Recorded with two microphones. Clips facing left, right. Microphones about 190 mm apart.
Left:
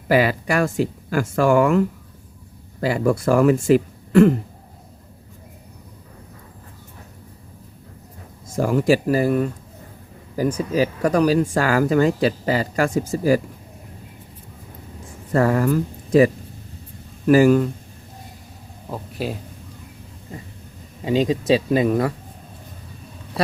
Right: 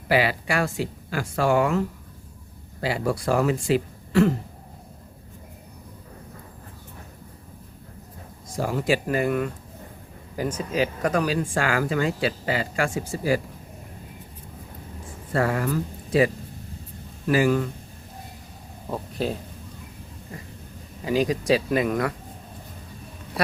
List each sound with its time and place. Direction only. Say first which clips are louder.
0.1 s speech: left 4 dB; 45° left (ahead or behind)
2.8 s speech: left 6 dB; 50° left (ahead or behind)
8.5 s speech: left 6 dB; 50° left (ahead or behind)
15.3 s speech: left 6 dB; 40° left (ahead or behind)
18.9 s a sound: even; 5° left (ahead or behind)
21.0 s speech: left 3 dB; 25° left (ahead or behind)